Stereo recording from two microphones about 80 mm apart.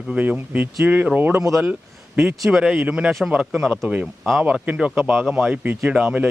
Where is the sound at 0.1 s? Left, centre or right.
Centre.